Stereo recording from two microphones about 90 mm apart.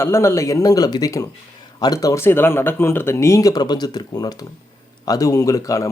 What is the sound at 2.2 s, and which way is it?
Speech, 25° left (ahead or behind).